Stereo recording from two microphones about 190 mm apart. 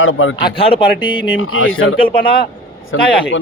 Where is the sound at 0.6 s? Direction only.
25° left (ahead or behind).